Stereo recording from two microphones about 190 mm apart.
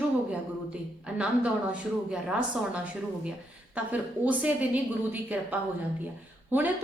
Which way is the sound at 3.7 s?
10° right (ahead or behind).